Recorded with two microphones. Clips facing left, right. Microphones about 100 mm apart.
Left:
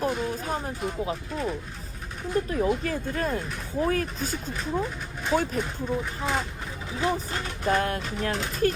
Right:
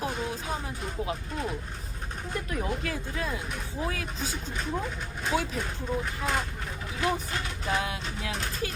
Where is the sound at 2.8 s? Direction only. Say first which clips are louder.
Left 5 dB; 50° left (ahead or behind).